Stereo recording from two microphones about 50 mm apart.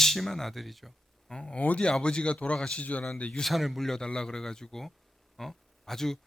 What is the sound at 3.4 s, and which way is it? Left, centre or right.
Speech, centre.